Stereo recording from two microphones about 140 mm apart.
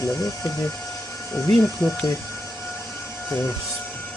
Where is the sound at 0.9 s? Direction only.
20° left (ahead or behind).